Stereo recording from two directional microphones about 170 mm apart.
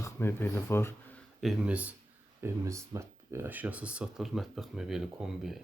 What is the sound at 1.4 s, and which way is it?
Speech, centre (ahead or behind).